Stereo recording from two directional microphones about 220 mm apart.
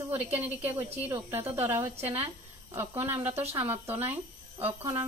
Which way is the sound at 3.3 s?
25° right (ahead or behind).